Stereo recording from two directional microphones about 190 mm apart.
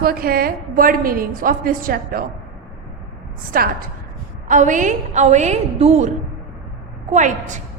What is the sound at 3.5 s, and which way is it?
A woman's voice, 50° right (ahead or behind).